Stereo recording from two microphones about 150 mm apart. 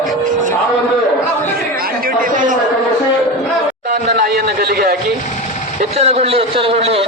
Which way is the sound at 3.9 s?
75° right (ahead or behind).